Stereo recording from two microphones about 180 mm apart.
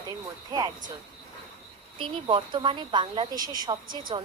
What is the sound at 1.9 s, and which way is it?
A woman's voice, 25° right (ahead or behind).